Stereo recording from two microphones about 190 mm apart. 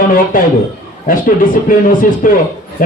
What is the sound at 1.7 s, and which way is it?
Speech, 45° left (ahead or behind).